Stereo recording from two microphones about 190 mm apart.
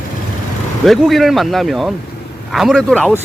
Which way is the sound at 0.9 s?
Centre (ahead or behind).